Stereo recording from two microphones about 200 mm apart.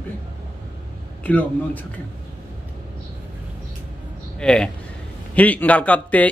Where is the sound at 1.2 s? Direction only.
10° left (ahead or behind).